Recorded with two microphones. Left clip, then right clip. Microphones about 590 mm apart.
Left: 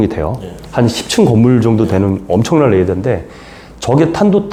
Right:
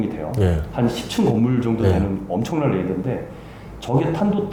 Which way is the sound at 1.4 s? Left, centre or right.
Left.